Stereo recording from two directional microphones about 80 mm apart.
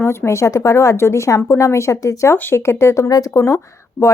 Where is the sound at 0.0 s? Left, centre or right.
Left.